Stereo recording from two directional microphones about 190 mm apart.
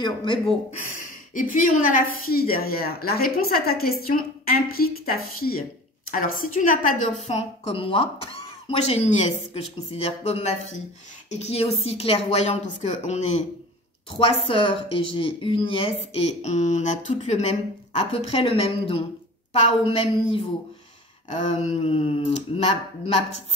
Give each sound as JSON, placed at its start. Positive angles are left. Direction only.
{"t": 0.0, "sound": "a woman's voice", "side_deg": 25}
{"t": 0.9, "sound": "a woman's voice", "side_deg": 45}
{"t": 7.2, "sound": "a woman's voice", "side_deg": 30}
{"t": 21.5, "sound": "speech", "side_deg": 35}